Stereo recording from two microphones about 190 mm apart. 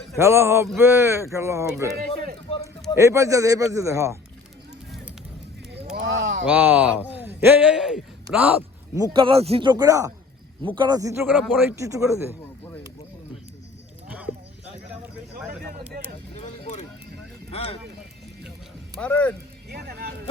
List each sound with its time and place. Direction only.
0.2 s speech: 15° right (ahead or behind)
2.5 s a sound: 30° left (ahead or behind)
2.9 s speech: 15° right (ahead or behind)
6.4 s a man's voice: 10° right (ahead or behind)
9.0 s speech: 25° right (ahead or behind)
17.5 s speech: 30° left (ahead or behind)
18.9 s speech: 5° left (ahead or behind)
19.6 s music: 55° right (ahead or behind)